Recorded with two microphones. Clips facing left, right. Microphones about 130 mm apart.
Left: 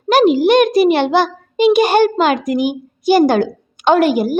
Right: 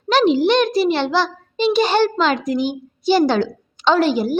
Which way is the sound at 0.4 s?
50° left (ahead or behind).